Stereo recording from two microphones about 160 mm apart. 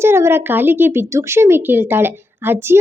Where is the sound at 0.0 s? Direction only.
15° right (ahead or behind).